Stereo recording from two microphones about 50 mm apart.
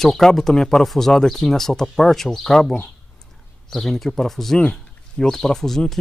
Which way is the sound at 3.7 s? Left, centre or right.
Centre.